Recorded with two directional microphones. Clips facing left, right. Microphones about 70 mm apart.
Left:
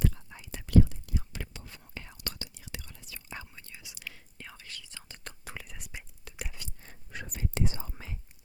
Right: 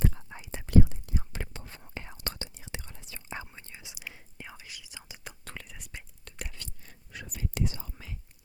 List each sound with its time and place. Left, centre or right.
0.0 s whispering: right; by 5.4 s centre
5.5 s whispering: centre
6.8 s whispering: left